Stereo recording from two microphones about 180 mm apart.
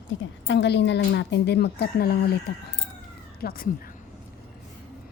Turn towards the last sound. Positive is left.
turn(degrees=55)  # may be behind; listen again after turning